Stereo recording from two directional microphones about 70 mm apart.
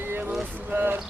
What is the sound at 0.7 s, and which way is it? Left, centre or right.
Speech, right.